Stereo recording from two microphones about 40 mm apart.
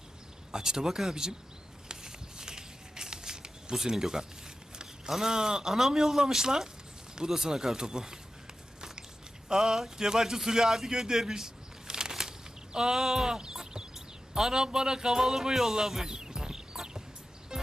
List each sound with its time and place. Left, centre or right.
0.5 s a man's voice: centre
1.9 s a sound: centre
3.8 s a man's voice: centre
9.5 s a man's voice: centre
11.2 s a sound: centre
12.7 s speech: centre
17.5 s music: centre